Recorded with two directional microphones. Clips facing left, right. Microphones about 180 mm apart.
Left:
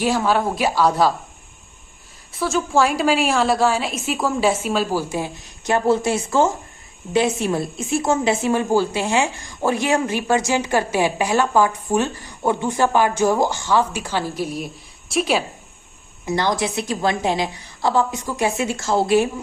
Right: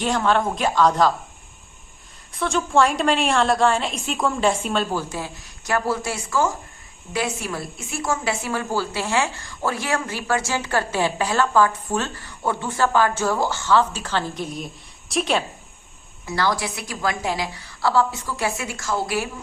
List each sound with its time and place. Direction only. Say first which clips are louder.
0.0 s a woman's voice: left 2 dB; 5° left (ahead or behind)
2.3 s a woman's voice: left 1 dB; 5° left (ahead or behind)
16.2 s a woman's voice: left 3 dB; 20° left (ahead or behind)